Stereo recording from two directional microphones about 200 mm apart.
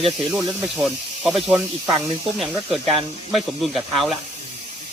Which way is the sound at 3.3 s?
Centre (ahead or behind).